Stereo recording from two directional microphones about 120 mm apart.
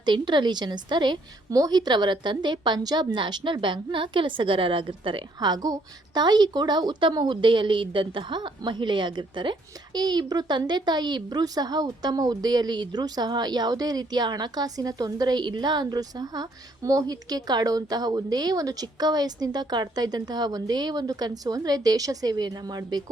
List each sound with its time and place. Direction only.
0.0 s a woman's voice: 40° right (ahead or behind)